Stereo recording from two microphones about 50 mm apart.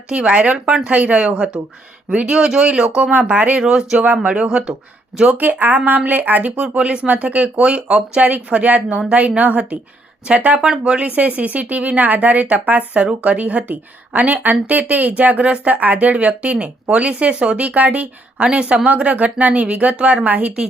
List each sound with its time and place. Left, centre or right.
0.1 s speech: right
3.6 s speech: centre
3.9 s speech: right
5.2 s speech: right
6.6 s speech: right
11.1 s speech: right